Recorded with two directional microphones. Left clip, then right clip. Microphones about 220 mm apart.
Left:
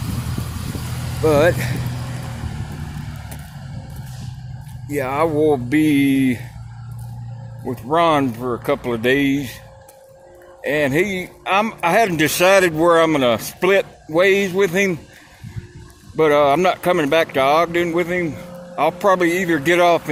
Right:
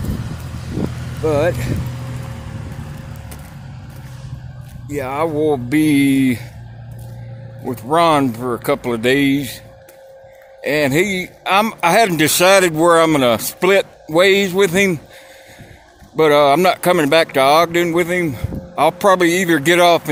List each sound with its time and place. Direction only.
0.1 s vehicle: 55° left (ahead or behind)
1.2 s speech: centre (ahead or behind)
4.9 s speech: 5° right (ahead or behind)
7.7 s speech: 20° right (ahead or behind)
10.6 s speech: 20° right (ahead or behind)
16.1 s speech: 20° right (ahead or behind)